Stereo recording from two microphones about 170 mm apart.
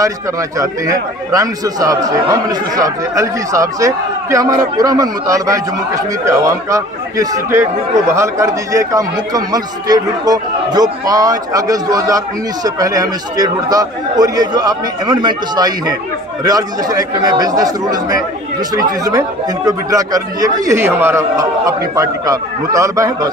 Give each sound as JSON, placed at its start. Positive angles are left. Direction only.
{"t": 0.6, "sound": "speech", "side_deg": -20}